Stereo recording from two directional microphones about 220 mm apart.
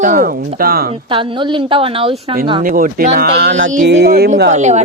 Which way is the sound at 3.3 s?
50° right (ahead or behind).